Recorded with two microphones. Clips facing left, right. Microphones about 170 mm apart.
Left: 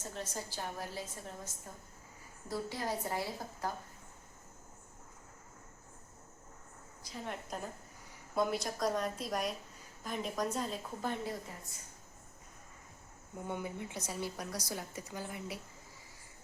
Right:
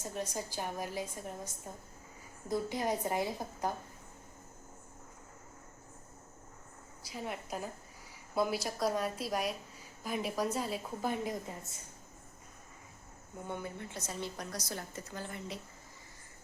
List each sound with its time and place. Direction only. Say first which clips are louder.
0.0 s a woman's voice: right 4 dB; 15° right (ahead or behind)
7.0 s a woman's voice: right 2 dB; 10° right (ahead or behind)
13.5 s a woman's voice: left 1 dB; 15° left (ahead or behind)